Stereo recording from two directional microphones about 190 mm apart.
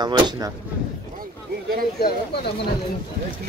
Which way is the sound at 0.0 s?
20° right (ahead or behind).